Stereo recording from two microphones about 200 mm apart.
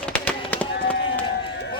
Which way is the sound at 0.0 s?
5° left (ahead or behind).